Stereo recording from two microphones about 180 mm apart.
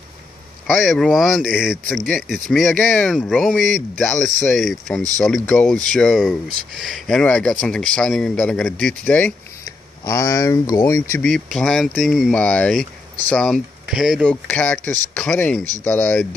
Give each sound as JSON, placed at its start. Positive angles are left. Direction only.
{"t": 0.7, "sound": "speech", "side_deg": 0}